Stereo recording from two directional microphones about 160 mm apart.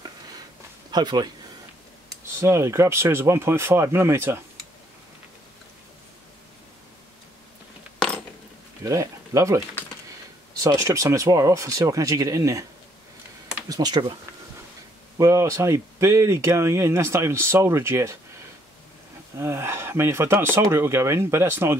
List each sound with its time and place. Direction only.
0.9 s speech: 25° right (ahead or behind)
8.8 s speech: 20° right (ahead or behind)
10.6 s speech: 20° right (ahead or behind)
13.7 s speech: 25° right (ahead or behind)
15.1 s speech: 20° right (ahead or behind)
19.3 s speech: 15° right (ahead or behind)